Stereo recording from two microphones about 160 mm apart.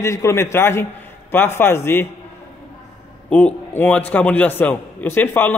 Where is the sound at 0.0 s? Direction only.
20° left (ahead or behind).